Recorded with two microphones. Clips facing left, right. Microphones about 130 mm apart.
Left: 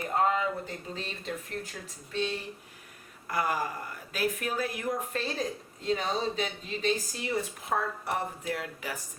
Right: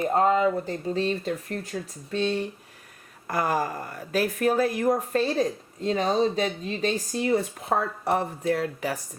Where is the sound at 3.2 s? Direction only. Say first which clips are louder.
Right 5 dB; 40° right (ahead or behind).